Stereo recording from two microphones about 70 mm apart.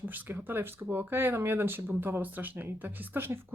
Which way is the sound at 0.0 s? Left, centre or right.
Right.